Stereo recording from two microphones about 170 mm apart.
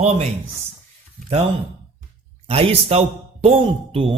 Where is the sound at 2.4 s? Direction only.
35° right (ahead or behind).